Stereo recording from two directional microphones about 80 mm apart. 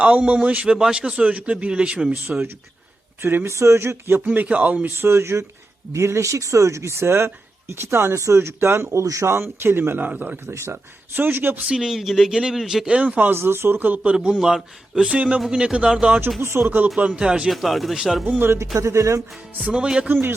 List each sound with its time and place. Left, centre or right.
0.0 s a man's voice: centre
3.2 s speech: right
4.4 s a man's voice: centre
4.9 s speech: right
11.6 s a man's voice: centre
13.3 s a man's voice: right; by 16.2 s centre
16.4 s speech: right
17.0 s a man's voice: centre
17.5 s speech: centre
18.3 s speech: right
19.5 s a man's voice: centre